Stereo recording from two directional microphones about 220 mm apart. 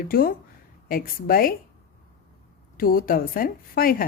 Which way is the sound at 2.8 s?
40° left (ahead or behind).